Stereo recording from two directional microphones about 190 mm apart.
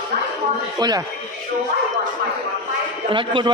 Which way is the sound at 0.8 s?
20° right (ahead or behind).